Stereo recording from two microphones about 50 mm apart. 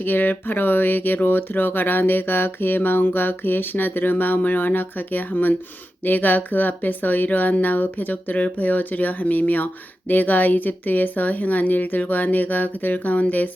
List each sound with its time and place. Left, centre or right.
0.0 s speech: left